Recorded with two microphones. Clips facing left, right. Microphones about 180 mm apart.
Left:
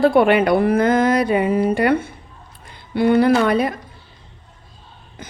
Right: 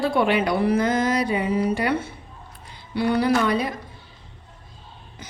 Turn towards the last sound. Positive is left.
turn(degrees=55)  # may be behind; listen again after turning